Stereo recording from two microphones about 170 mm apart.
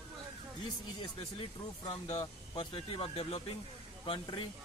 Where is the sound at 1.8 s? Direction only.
30° left (ahead or behind).